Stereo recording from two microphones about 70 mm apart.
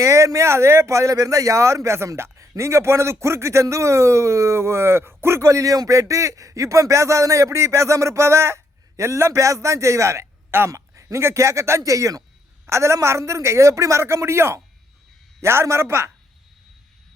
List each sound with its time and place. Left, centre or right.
0.0 s speech: right
11.8 s speech: right